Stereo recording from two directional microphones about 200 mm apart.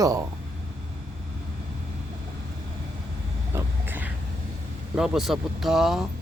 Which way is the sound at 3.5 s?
10° right (ahead or behind).